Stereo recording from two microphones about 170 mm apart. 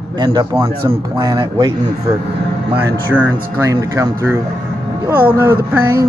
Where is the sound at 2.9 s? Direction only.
10° right (ahead or behind).